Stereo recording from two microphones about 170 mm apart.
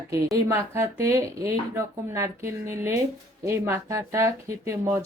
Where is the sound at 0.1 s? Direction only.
20° right (ahead or behind).